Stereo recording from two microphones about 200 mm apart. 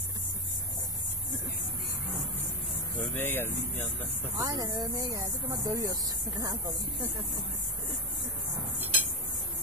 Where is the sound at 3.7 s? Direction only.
10° left (ahead or behind).